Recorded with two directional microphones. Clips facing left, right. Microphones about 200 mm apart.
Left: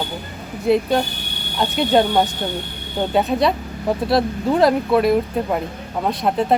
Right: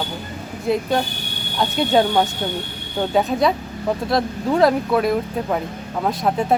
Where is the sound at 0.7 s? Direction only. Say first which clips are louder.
Left 3 dB; centre (ahead or behind).